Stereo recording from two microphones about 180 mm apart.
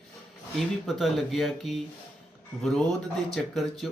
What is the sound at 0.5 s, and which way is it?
Speech, centre (ahead or behind).